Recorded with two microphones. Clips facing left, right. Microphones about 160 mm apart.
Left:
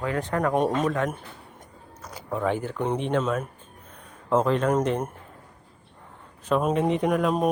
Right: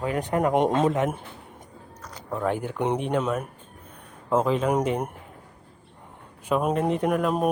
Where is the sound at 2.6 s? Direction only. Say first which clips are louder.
Right 1 dB; 15° right (ahead or behind).